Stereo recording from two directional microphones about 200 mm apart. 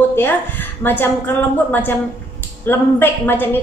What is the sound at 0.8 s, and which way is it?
A woman's voice, 10° left (ahead or behind).